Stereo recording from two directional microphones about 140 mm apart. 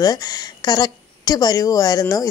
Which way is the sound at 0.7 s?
30° left (ahead or behind).